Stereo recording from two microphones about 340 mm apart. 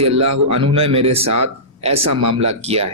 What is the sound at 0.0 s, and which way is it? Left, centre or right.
Speech, right.